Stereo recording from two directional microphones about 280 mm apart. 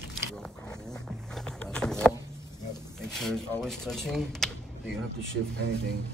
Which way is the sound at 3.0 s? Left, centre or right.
Centre.